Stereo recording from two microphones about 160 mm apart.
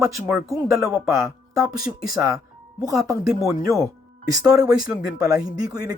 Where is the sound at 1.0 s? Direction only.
15° right (ahead or behind).